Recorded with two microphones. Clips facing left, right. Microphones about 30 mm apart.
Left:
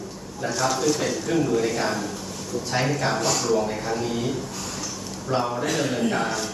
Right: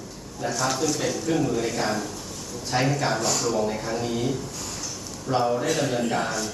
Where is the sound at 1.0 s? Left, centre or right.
Centre.